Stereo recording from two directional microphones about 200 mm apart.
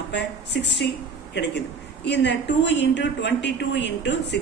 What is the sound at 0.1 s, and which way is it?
A woman's voice, 60° left (ahead or behind).